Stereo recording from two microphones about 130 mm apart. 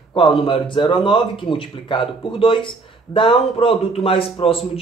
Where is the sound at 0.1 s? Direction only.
45° left (ahead or behind).